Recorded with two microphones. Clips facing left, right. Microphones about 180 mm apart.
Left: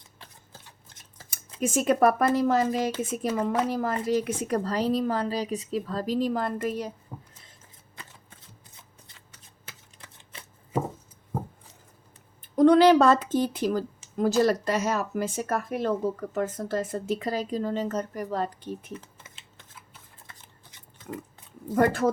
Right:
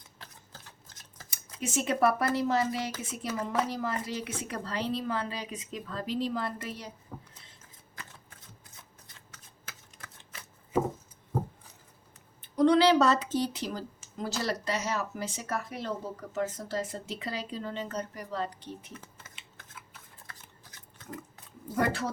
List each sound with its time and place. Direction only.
1.6 s speech: 50° left (ahead or behind)
9.3 s chopping: 30° left (ahead or behind)
12.4 s speech: 50° left (ahead or behind)
21.8 s speech: 50° left (ahead or behind)